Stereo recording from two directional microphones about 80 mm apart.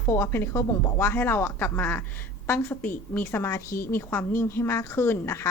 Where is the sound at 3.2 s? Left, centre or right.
Left.